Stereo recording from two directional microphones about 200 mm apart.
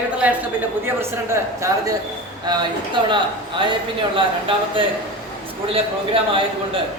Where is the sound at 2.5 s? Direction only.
25° right (ahead or behind).